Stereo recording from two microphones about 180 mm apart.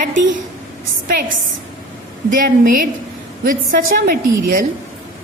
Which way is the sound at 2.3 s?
45° right (ahead or behind).